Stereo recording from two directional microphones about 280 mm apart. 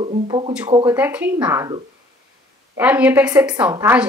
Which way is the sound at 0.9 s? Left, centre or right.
Centre.